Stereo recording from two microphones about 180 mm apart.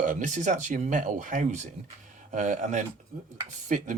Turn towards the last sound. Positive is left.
turn(degrees=-45)  # may be behind; listen again after turning